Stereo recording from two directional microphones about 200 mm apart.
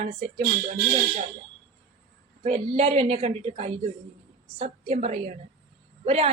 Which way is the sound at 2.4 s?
30° right (ahead or behind).